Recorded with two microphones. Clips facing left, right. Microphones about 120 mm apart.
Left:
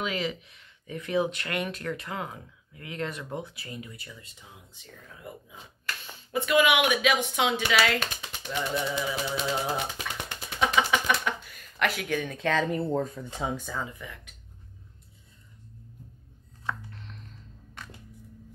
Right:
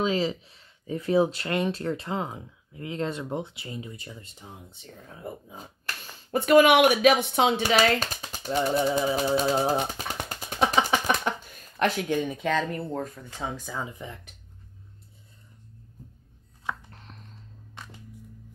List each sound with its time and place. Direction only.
0.0 s speech: 30° right (ahead or behind)
12.3 s speech: 5° right (ahead or behind)
12.6 s speech: 5° left (ahead or behind)
13.0 s speech: 20° left (ahead or behind)
13.5 s speech: centre (ahead or behind)
13.7 s speech: 25° right (ahead or behind)
16.9 s a sound: 40° right (ahead or behind)